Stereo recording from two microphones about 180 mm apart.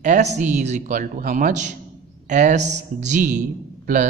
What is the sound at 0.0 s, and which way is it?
A man's voice, 40° right (ahead or behind).